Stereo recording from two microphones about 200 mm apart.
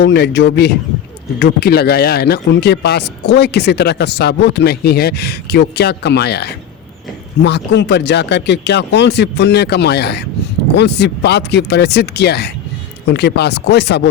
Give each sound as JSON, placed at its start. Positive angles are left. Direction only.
{"t": 0.0, "sound": "speech", "side_deg": 60}